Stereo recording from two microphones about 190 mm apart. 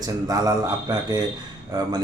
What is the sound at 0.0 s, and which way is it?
Speech, 20° right (ahead or behind).